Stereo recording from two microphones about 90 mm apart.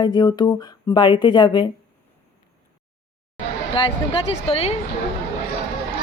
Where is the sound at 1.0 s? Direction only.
60° left (ahead or behind).